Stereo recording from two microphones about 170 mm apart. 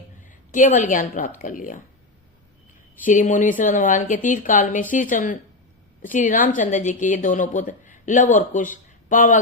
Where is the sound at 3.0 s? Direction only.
50° left (ahead or behind).